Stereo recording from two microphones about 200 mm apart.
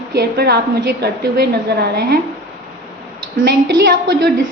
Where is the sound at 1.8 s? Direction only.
55° right (ahead or behind).